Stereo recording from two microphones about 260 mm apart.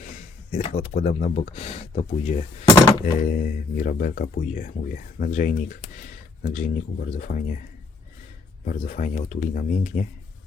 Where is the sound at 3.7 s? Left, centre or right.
Left.